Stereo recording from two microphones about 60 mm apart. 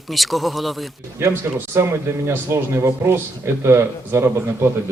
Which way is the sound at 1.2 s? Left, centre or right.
Right.